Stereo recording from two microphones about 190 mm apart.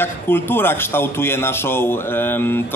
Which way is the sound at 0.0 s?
10° left (ahead or behind).